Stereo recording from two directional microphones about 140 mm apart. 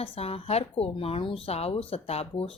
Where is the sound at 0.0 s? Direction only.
45° left (ahead or behind).